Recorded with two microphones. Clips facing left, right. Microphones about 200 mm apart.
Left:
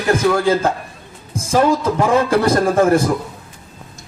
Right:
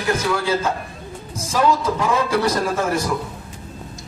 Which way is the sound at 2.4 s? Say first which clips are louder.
Left 7 dB; 50° left (ahead or behind).